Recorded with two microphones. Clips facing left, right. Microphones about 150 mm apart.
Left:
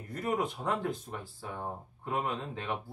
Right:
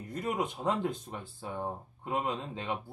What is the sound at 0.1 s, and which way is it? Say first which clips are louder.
Speech: left 1 dB; 20° right (ahead or behind).